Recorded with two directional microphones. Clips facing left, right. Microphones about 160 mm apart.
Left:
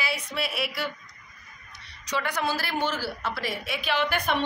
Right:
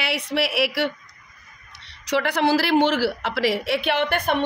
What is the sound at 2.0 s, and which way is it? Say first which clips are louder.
A woman's voice: right 8 dB; 70° right (ahead or behind).